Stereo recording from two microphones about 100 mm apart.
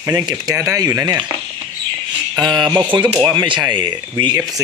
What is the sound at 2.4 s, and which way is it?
Speech, 45° right (ahead or behind).